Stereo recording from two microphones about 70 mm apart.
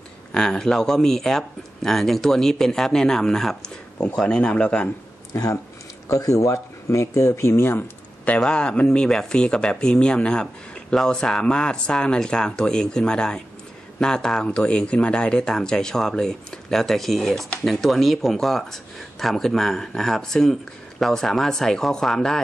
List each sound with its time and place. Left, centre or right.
0.3 s speech: centre
6.0 s speech: left
8.4 s speech: centre